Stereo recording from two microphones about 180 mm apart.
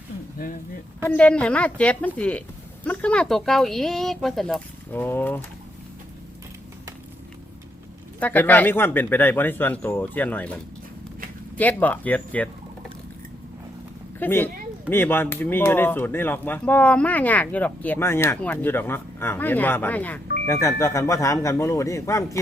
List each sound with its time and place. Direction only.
0.3 s speech: 50° left (ahead or behind)
1.0 s speech: 5° left (ahead or behind)
8.2 s speech: 10° left (ahead or behind)
11.5 s speech: 10° left (ahead or behind)
14.2 s speech: 10° left (ahead or behind)